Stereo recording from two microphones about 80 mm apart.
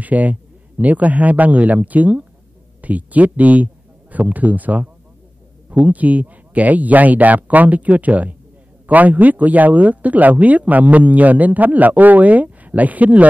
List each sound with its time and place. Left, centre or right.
0.0 s a man's voice: centre